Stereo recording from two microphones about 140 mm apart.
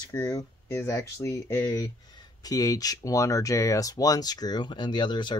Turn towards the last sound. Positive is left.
turn(degrees=30)  # may be behind; listen again after turning